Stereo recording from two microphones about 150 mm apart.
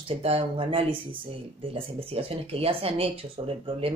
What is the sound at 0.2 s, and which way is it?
Speech, 40° right (ahead or behind).